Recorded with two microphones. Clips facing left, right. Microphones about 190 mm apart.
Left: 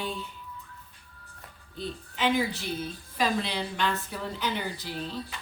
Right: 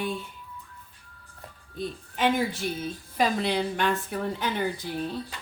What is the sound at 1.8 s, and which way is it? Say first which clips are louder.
Speech: right 3 dB; 50° right (ahead or behind).